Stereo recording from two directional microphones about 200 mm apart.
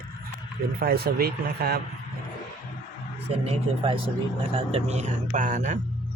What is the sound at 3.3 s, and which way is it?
A man's voice, 30° right (ahead or behind).